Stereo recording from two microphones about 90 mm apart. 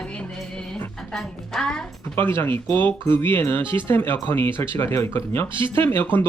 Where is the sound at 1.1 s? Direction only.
5° left (ahead or behind).